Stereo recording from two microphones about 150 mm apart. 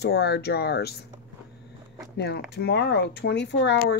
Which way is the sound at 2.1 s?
90° left.